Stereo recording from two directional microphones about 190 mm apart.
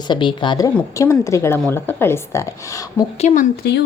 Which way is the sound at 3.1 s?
40° left (ahead or behind).